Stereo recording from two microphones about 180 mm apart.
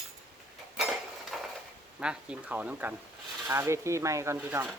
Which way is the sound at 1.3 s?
Centre (ahead or behind).